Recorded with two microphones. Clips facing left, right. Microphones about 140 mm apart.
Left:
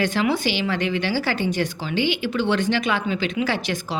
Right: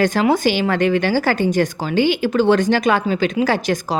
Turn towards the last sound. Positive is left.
turn(degrees=-40)  # may be behind; listen again after turning